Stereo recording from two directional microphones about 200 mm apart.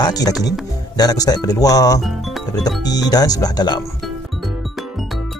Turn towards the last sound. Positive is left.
turn(degrees=20)  # may be behind; listen again after turning